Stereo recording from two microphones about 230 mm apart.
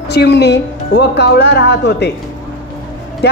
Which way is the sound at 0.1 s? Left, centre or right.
Left.